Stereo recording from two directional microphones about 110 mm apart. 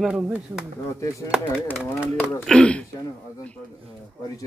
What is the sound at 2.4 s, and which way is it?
Speech, 10° left (ahead or behind).